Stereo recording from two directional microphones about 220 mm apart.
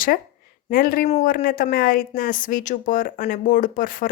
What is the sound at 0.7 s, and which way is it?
A woman's voice, 40° left (ahead or behind).